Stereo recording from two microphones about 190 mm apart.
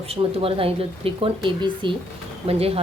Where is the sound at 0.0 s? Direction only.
30° right (ahead or behind).